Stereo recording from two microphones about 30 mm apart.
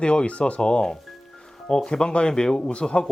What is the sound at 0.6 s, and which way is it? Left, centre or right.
Speech, left.